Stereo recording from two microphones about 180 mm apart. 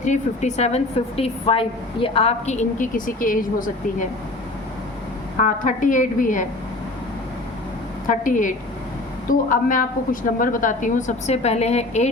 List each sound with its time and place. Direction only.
0.0 s a woman's voice: 40° left (ahead or behind)
5.4 s a woman's voice: 45° left (ahead or behind)
8.0 s a woman's voice: 45° left (ahead or behind)